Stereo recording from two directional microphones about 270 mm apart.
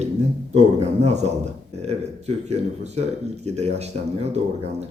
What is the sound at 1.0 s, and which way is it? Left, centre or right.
A man's voice, right.